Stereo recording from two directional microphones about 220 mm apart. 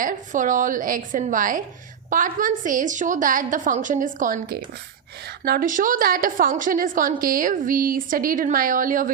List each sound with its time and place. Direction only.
0.0 s a woman's voice: 35° right (ahead or behind)